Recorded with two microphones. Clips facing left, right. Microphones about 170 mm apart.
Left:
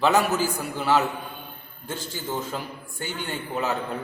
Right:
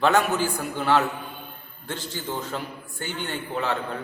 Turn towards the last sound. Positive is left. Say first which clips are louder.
# even
turn(degrees=5)  # may be behind; listen again after turning